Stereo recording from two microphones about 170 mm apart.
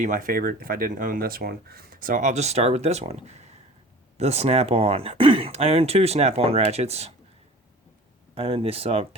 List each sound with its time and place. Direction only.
0.0 s speech: 55° right (ahead or behind)
8.4 s speech: 35° right (ahead or behind)